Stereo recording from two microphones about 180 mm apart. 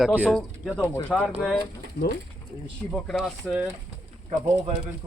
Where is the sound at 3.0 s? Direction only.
Centre (ahead or behind).